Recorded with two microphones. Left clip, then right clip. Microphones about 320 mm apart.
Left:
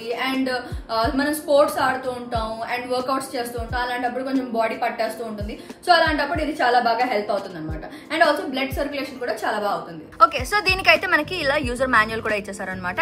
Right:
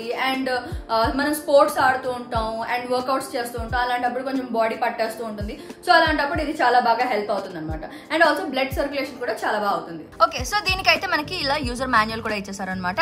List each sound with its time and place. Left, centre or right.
0.1 s a woman's voice: centre
10.1 s a woman's voice: centre